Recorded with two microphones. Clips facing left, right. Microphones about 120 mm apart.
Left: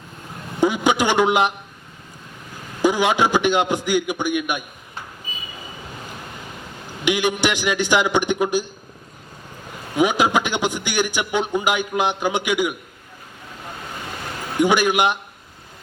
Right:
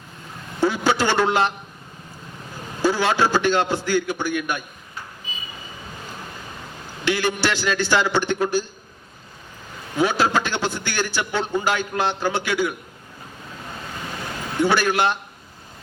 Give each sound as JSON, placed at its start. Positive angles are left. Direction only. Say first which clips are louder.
{"t": 0.6, "sound": "a sound", "louder": "left 2 dB", "side_deg": 15}
{"t": 2.8, "sound": "a man's voice", "louder": "left 2 dB", "side_deg": 15}
{"t": 7.0, "sound": "a man's voice", "louder": "left 2 dB", "side_deg": 15}
{"t": 9.9, "sound": "a man's voice", "louder": "left 2 dB", "side_deg": 15}
{"t": 14.6, "sound": "a man's voice", "louder": "left 2 dB", "side_deg": 15}